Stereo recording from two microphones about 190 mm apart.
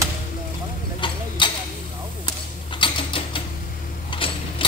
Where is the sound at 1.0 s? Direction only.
25° left (ahead or behind).